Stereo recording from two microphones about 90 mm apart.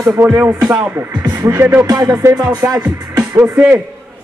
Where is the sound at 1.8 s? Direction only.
40° right (ahead or behind).